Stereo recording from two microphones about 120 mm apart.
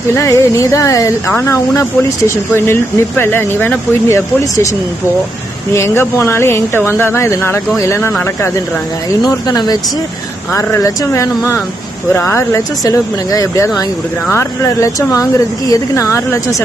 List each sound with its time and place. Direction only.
0.2 s speech: 25° left (ahead or behind)
5.7 s speech: 20° left (ahead or behind)
9.2 s speech: 30° left (ahead or behind)